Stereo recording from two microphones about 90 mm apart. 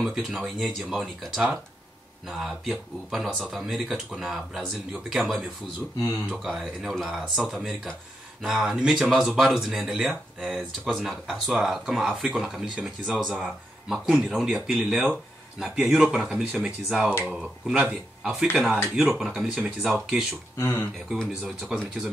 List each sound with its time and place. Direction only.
0.0 s speech: 5° right (ahead or behind)
20.5 s speech: 25° left (ahead or behind)
21.5 s speech: 5° right (ahead or behind)